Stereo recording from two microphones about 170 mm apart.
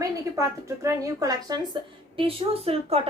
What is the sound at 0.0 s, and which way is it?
A woman's voice, 20° right (ahead or behind).